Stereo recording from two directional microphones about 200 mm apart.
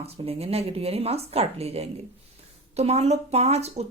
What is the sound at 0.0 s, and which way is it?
Speech, 30° right (ahead or behind).